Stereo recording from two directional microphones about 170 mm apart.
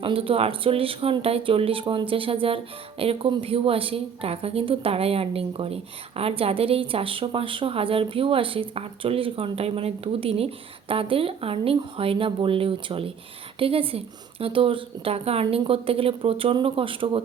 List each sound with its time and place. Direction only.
0.0 s a woman's voice: 30° right (ahead or behind)